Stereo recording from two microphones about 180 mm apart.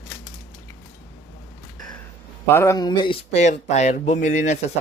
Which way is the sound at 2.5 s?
15° left (ahead or behind).